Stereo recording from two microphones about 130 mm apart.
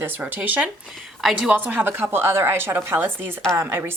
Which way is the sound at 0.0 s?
15° right (ahead or behind).